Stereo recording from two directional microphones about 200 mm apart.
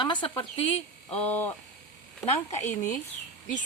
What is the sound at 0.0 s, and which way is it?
Speech, 25° left (ahead or behind).